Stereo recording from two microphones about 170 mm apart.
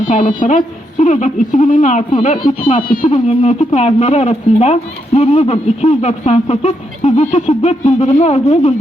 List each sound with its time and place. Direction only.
0.0 s a woman's voice: 45° left (ahead or behind)
2.6 s speech: 30° left (ahead or behind)
2.8 s speech: 55° left (ahead or behind)
3.2 s speech: 40° left (ahead or behind)